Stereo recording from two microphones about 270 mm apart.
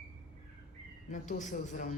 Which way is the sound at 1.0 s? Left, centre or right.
Left.